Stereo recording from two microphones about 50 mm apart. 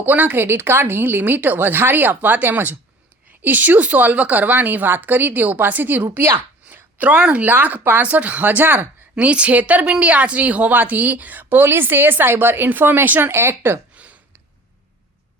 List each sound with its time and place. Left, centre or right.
0.0 s speech: right
0.4 s speech: right
6.3 s a sound: right
7.0 s a woman's voice: right
7.4 s speech: right
9.1 s a woman's voice: right
13.9 s a sound: right